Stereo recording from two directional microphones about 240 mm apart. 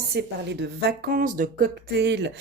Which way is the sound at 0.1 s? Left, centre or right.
Right.